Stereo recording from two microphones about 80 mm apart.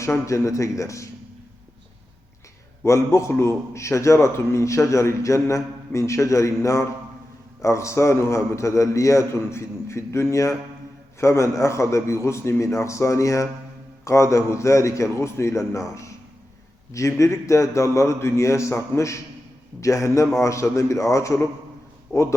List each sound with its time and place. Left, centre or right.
0.0 s a man's voice: left
2.8 s a man's voice: left